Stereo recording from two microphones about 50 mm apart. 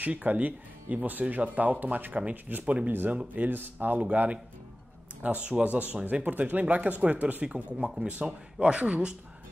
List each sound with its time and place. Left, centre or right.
0.0 s speech: right
3.4 s speech: right
4.0 s speech: right
7.4 s speech: centre